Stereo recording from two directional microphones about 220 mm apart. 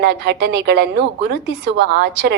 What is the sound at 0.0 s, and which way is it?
A woman's voice, 50° right (ahead or behind).